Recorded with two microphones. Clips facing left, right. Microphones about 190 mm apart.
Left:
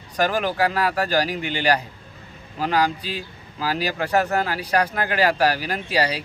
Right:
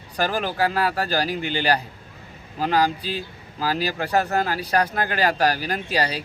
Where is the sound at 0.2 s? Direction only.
35° right (ahead or behind).